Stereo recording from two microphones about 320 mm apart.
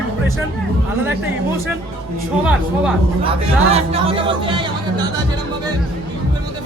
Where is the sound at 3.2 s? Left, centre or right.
Centre.